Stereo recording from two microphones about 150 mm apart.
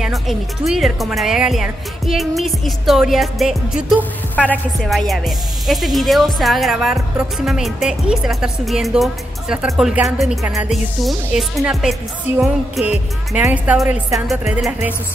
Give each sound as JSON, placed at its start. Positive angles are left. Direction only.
{"t": 0.0, "sound": "a woman's voice", "side_deg": 0}
{"t": 13.7, "sound": "speech", "side_deg": 0}